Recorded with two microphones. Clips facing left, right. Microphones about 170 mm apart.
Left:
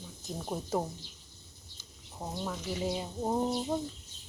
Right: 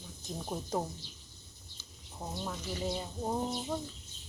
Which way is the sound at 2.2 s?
5° left (ahead or behind).